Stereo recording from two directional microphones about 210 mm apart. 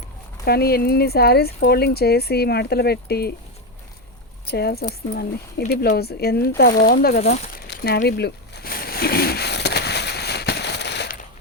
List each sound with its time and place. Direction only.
0.4 s speech: 50° left (ahead or behind)
4.4 s speech: 50° left (ahead or behind)
7.5 s a sound: 45° left (ahead or behind)